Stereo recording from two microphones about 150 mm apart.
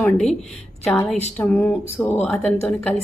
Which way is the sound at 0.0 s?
5° left (ahead or behind).